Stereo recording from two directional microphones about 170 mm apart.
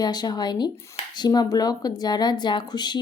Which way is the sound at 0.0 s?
25° left (ahead or behind).